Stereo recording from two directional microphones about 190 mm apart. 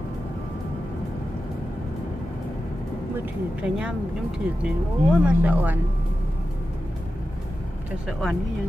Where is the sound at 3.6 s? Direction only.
5° right (ahead or behind).